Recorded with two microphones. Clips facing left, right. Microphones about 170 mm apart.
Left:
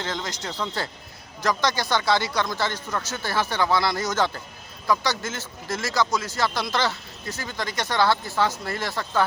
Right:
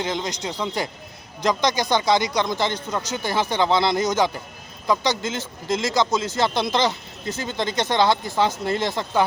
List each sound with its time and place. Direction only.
0.0 s speech: 15° right (ahead or behind)